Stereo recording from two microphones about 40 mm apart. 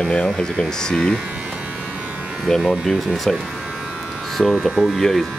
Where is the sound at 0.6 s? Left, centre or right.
Centre.